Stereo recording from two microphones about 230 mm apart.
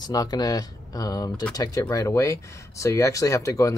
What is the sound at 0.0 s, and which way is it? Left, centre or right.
Speech, centre.